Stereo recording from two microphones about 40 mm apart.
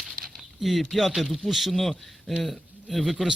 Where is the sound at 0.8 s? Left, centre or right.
Centre.